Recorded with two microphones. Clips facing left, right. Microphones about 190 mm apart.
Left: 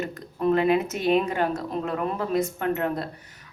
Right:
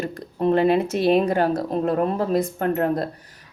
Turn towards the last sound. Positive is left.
turn(degrees=-40)  # may be behind; listen again after turning